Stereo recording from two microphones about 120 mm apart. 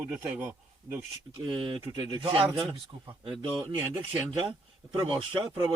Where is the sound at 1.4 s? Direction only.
45° right (ahead or behind).